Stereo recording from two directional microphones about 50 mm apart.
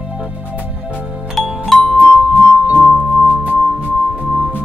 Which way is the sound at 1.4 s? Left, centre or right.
Centre.